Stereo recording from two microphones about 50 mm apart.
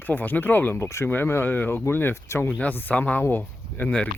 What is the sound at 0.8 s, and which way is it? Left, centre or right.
Speech, left.